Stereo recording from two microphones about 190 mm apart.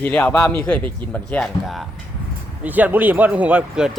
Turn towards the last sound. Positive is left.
turn(degrees=-10)  # may be behind; listen again after turning